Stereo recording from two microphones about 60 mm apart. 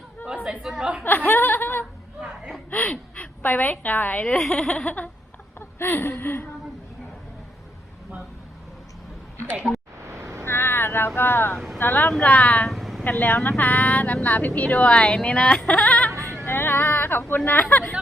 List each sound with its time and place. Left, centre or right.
0.6 s a woman's voice: centre
1.0 s chuckle: left
2.2 s gasp: centre
2.6 s a woman's voice: left
4.4 s speech: centre
5.5 s speech: left
10.0 s cat: right
10.4 s boat: left
11.8 s speech: left
12.6 s a sound: centre
13.1 s speech: left
16.5 s a sound: left